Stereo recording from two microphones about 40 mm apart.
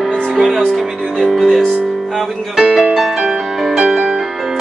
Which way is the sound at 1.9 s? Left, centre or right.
Centre.